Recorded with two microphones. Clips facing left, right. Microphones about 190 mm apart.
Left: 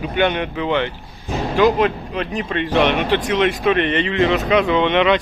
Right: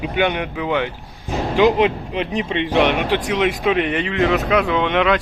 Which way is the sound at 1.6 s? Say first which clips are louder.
Right 1 dB; 20° right (ahead or behind).